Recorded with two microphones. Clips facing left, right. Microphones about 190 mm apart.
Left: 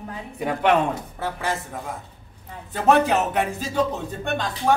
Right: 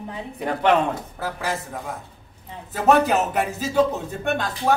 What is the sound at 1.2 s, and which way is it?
Speech, centre (ahead or behind).